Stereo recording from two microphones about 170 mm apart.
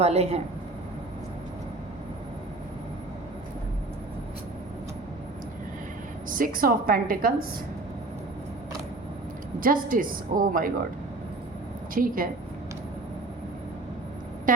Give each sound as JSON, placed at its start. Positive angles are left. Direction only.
{"t": 0.0, "sound": "speech", "side_deg": -40}
{"t": 6.3, "sound": "a woman's voice", "side_deg": -55}
{"t": 9.6, "sound": "a woman's voice", "side_deg": -55}
{"t": 11.9, "sound": "a woman's voice", "side_deg": -55}